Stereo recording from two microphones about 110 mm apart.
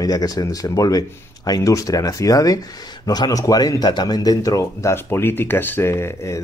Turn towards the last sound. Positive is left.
turn(degrees=25)  # may be behind; listen again after turning